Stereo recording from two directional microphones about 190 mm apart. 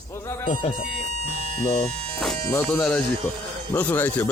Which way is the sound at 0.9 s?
45° right (ahead or behind).